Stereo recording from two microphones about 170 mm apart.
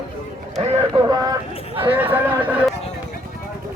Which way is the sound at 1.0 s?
25° right (ahead or behind).